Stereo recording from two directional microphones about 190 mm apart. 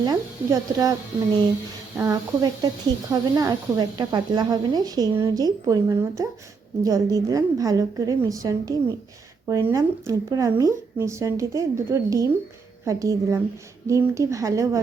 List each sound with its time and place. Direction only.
0.0 s speech: 20° right (ahead or behind)
2.0 s speech: 20° right (ahead or behind)